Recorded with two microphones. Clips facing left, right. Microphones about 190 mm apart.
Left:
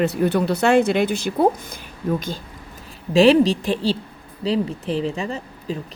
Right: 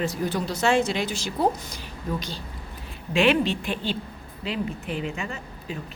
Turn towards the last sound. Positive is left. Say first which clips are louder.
# left 7 dB
turn(degrees=35)  # may be behind; listen again after turning